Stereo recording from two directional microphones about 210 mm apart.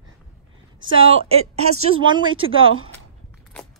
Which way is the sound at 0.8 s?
30° right (ahead or behind).